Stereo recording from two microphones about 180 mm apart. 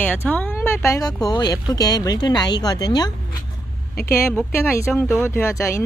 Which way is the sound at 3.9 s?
55° left (ahead or behind).